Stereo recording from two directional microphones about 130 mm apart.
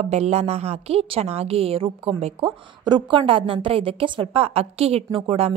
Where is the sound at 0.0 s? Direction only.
55° right (ahead or behind).